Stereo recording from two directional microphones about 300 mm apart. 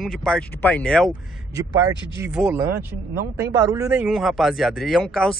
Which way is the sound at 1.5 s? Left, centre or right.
Centre.